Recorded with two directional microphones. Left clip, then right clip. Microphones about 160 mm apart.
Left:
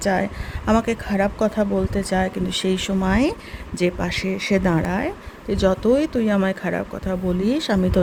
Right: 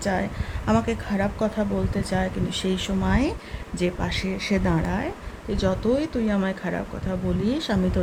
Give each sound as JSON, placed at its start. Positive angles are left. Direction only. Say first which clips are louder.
{"t": 0.0, "sound": "speech", "louder": "left 5 dB", "side_deg": 40}